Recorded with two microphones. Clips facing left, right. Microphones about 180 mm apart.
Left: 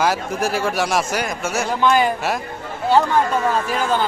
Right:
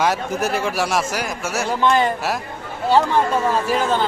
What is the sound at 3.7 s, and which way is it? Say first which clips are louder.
Speech: right 1 dB; centre (ahead or behind).